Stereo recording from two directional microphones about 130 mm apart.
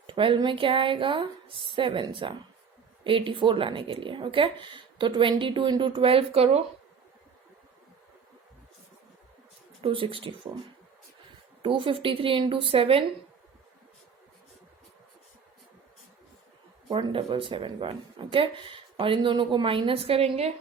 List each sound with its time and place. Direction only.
0.1 s speech: 40° right (ahead or behind)
9.8 s speech: 45° right (ahead or behind)
11.6 s speech: 40° right (ahead or behind)
16.9 s speech: 40° right (ahead or behind)